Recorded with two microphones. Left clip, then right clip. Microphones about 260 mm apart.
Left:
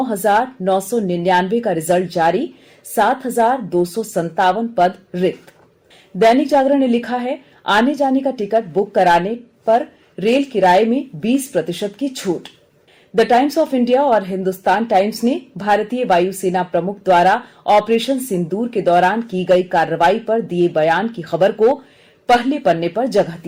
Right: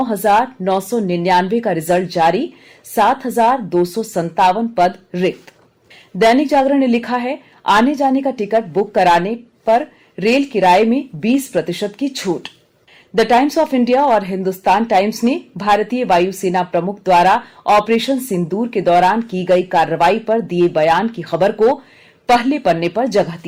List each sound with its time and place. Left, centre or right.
0.2 s a woman's voice: right